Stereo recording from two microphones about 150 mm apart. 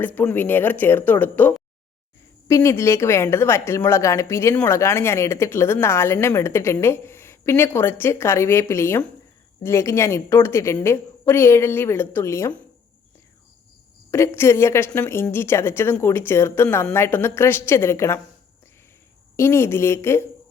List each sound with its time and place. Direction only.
0.0 s a woman's voice: 10° left (ahead or behind)
14.1 s speech: 15° left (ahead or behind)
19.4 s speech: 15° left (ahead or behind)